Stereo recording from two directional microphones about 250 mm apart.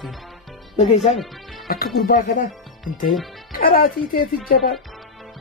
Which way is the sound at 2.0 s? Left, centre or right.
Left.